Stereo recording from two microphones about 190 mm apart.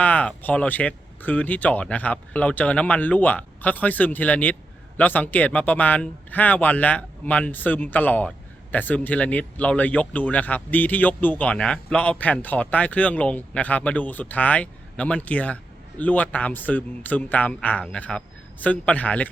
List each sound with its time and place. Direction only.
0.0 s speech: 5° left (ahead or behind)